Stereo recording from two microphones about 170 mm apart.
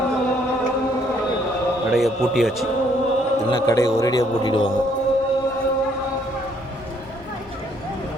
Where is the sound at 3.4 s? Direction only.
25° left (ahead or behind).